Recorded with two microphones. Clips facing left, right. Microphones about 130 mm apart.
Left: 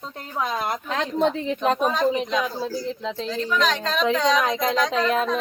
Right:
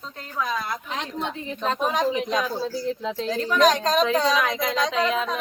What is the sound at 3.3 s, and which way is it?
Speech, 50° right (ahead or behind).